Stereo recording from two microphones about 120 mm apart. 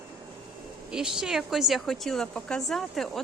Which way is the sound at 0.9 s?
5° right (ahead or behind).